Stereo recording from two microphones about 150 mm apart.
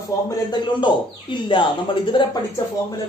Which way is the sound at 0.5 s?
30° left (ahead or behind).